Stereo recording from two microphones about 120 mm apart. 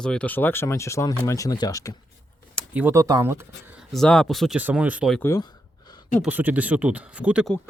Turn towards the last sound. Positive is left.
turn(degrees=-10)  # may be behind; listen again after turning